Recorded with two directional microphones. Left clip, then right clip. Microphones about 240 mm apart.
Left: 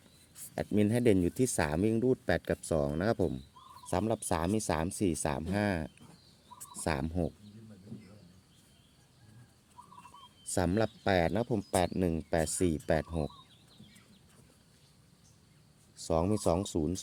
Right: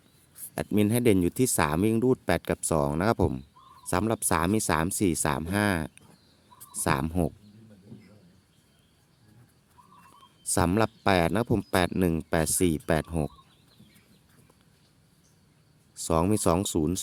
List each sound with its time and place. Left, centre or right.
0.5 s speech: right
10.4 s speech: right
16.0 s speech: right